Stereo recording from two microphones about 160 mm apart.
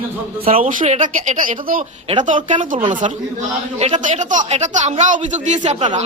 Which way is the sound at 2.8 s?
30° right (ahead or behind).